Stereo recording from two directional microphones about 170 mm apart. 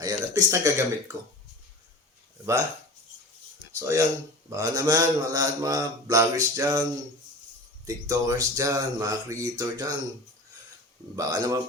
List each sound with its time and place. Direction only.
0.0 s speech: 20° right (ahead or behind)
3.7 s a man's voice: 15° right (ahead or behind)
7.9 s a man's voice: 20° right (ahead or behind)
11.2 s a man's voice: 20° right (ahead or behind)